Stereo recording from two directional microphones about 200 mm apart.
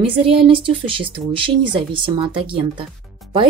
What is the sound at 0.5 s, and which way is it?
Speech, 25° right (ahead or behind).